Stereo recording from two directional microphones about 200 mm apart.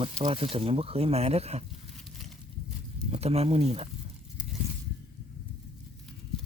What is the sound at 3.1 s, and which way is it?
Speech, 30° right (ahead or behind).